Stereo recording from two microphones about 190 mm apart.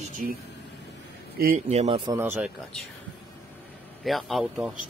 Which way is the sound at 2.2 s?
10° right (ahead or behind).